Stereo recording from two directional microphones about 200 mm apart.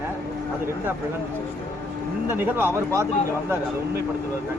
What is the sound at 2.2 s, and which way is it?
Speech, 10° right (ahead or behind).